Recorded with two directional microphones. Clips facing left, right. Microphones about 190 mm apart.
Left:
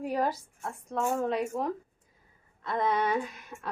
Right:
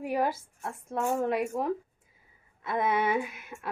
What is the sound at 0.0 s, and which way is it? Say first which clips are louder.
Speech: right 1 dB; 5° right (ahead or behind).